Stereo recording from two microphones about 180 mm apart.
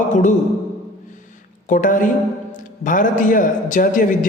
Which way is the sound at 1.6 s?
45° left (ahead or behind).